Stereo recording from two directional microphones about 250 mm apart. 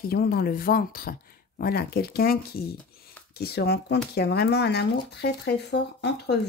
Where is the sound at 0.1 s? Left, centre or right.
Left.